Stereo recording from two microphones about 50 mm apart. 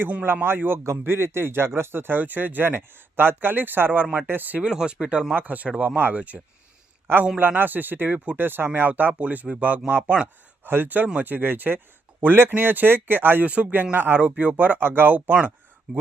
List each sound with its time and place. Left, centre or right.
0.4 s speech: right
4.6 s speech: centre
5.3 s speech: right
10.6 s speech: right
13.5 s speech: right
13.9 s speech: right